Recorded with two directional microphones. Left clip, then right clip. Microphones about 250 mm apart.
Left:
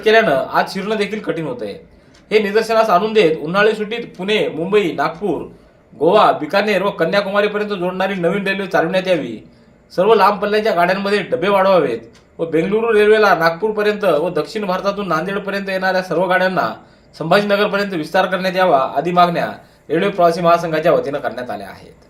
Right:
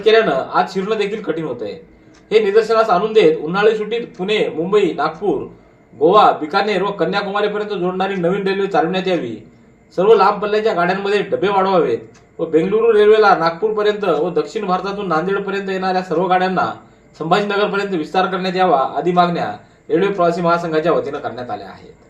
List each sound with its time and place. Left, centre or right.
0.0 s a man's voice: left